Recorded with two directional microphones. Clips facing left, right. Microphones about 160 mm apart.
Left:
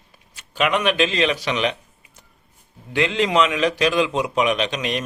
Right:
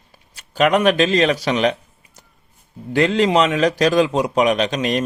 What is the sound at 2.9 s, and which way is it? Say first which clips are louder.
Speech: right 4 dB; 40° right (ahead or behind).